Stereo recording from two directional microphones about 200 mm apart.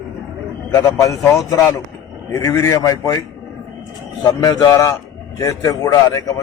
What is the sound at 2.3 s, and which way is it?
Speech, 15° left (ahead or behind).